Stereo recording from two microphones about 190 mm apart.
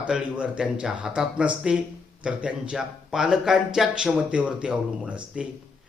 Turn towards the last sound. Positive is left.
turn(degrees=-5)  # may be behind; listen again after turning